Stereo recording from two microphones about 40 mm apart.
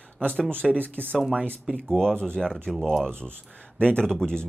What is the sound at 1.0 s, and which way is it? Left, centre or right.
Speech, right.